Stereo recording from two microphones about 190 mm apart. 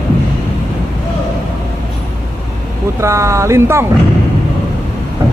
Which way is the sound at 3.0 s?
15° right (ahead or behind).